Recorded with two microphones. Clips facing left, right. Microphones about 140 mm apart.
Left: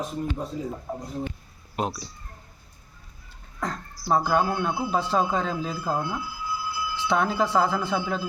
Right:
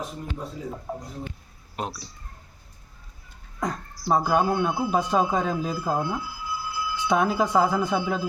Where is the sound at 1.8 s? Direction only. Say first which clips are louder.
Left 4 dB; 5° left (ahead or behind).